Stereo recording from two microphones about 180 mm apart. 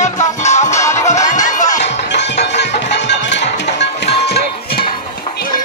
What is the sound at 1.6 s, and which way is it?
Music, 45° left (ahead or behind).